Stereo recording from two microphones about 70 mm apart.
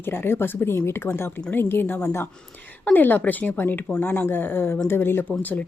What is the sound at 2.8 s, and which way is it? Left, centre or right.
A woman's voice, left.